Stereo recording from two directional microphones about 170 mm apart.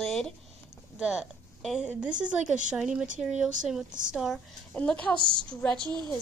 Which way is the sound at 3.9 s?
50° right (ahead or behind).